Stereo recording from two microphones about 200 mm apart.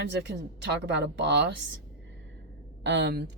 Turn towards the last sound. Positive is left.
turn(degrees=-55)  # may be behind; listen again after turning